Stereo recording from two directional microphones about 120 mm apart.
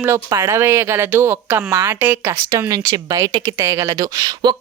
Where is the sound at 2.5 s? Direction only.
25° right (ahead or behind).